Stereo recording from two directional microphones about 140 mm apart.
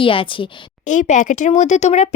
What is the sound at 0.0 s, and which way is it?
Speech, 40° left (ahead or behind).